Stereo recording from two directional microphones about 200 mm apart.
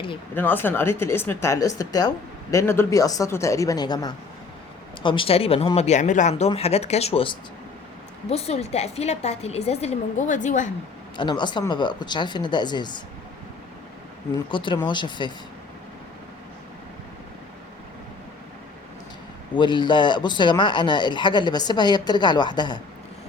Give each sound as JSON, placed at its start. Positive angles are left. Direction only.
{"t": 0.3, "sound": "a woman's voice", "side_deg": 10}
{"t": 11.2, "sound": "speech", "side_deg": 20}
{"t": 14.5, "sound": "speech", "side_deg": 25}
{"t": 19.5, "sound": "speech", "side_deg": 25}